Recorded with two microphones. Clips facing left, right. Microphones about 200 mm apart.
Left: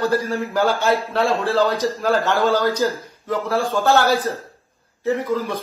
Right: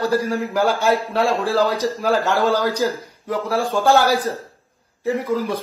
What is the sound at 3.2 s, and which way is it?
Speech, 15° right (ahead or behind).